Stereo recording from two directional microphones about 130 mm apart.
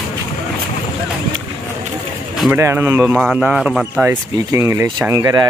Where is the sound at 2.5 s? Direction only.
20° right (ahead or behind).